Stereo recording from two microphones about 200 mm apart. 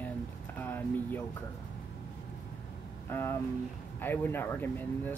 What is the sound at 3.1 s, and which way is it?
Speech, 10° left (ahead or behind).